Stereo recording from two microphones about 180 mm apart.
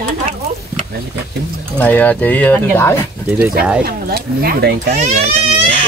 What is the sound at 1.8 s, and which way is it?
Speech, 10° left (ahead or behind).